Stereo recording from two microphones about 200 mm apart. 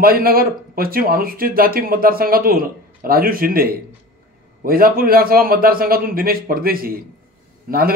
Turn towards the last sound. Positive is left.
turn(degrees=-50)  # may be behind; listen again after turning